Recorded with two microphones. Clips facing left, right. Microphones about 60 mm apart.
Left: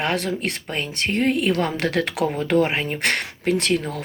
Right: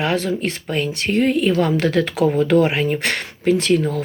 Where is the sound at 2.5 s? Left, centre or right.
Left.